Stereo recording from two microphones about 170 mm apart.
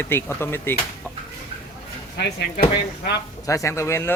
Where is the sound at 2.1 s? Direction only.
75° left (ahead or behind).